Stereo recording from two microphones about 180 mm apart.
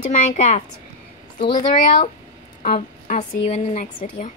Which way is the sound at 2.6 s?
40° left (ahead or behind).